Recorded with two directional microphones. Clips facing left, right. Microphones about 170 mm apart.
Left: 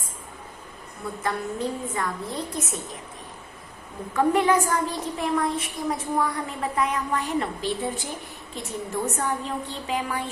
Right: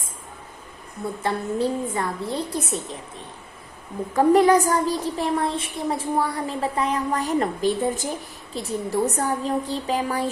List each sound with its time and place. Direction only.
1.2 s a woman's voice: 30° right (ahead or behind)
4.1 s a woman's voice: 35° right (ahead or behind)